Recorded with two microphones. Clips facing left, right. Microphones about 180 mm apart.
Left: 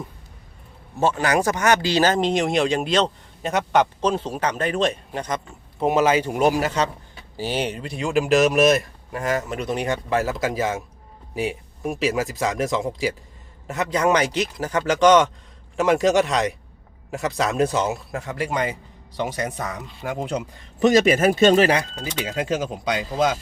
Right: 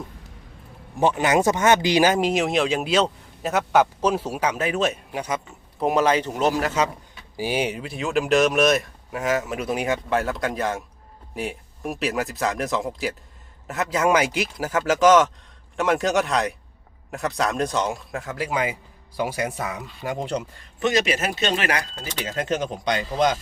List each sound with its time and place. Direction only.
0.9 s speech: 15° right (ahead or behind)
5.8 s speech: 5° left (ahead or behind)
6.6 s speech: 5° right (ahead or behind)
20.0 s speech: 5° left (ahead or behind)
20.7 s speech: 45° left (ahead or behind)
21.9 s speech: 10° left (ahead or behind)